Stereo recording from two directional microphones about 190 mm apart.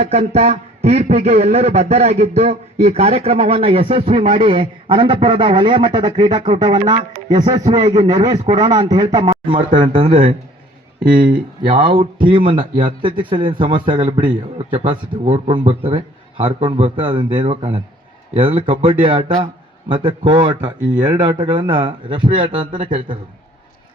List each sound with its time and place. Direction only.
0.0 s a man's voice: 35° right (ahead or behind)
11.7 s speech: 25° right (ahead or behind)